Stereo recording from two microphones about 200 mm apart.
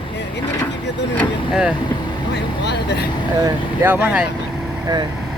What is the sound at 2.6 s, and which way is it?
Vehicle, 55° left (ahead or behind).